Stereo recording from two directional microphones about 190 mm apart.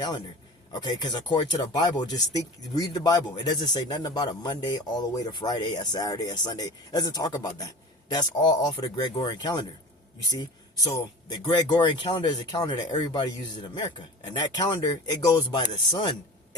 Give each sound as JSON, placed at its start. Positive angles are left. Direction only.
{"t": 0.7, "sound": "speech", "side_deg": 20}